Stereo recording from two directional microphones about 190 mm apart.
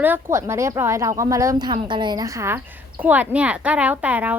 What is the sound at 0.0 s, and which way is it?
A woman's voice, 10° right (ahead or behind).